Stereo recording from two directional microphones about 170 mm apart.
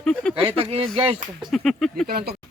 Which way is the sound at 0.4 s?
35° right (ahead or behind).